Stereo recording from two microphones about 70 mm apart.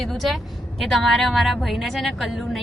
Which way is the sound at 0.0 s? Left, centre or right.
Centre.